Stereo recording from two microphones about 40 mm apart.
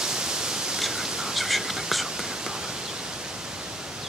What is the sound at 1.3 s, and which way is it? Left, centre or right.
Whispering, centre.